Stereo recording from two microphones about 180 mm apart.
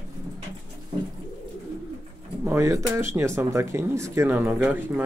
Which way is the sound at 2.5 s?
15° right (ahead or behind).